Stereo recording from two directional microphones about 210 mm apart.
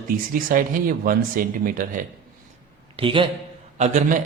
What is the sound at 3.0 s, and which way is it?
A man's voice, 25° right (ahead or behind).